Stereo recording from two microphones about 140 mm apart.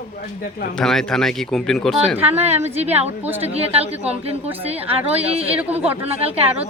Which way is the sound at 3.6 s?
45° right (ahead or behind).